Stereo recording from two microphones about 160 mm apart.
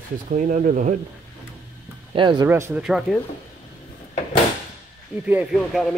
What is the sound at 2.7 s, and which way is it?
Speech, 5° right (ahead or behind).